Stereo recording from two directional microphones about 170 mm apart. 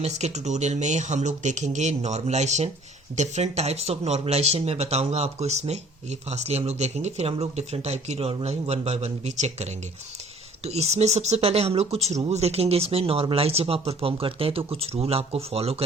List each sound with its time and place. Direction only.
0.0 s speech: 40° right (ahead or behind)